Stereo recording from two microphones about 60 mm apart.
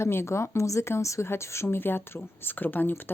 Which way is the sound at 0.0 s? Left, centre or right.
Left.